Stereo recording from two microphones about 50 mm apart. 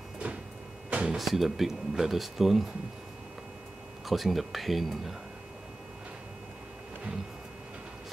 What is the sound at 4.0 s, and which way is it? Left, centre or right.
Speech, centre.